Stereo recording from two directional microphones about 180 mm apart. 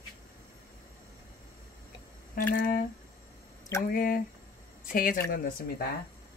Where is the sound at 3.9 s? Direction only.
55° left (ahead or behind).